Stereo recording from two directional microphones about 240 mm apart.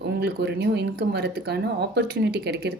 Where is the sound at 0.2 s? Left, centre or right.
Right.